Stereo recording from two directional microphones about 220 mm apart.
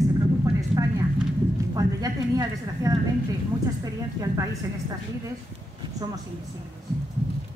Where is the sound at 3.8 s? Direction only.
15° right (ahead or behind).